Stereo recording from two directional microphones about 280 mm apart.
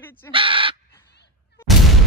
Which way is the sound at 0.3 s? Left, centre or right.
Centre.